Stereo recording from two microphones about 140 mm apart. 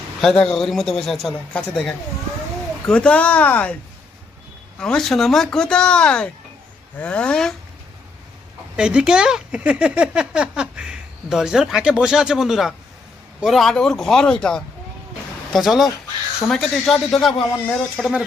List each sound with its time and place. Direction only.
0.2 s a man's voice: 5° left (ahead or behind)
4.8 s a man's voice: 5° left (ahead or behind)
8.7 s a man's voice: 5° right (ahead or behind)